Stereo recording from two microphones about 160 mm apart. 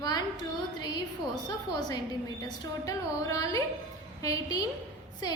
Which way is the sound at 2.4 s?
20° left (ahead or behind).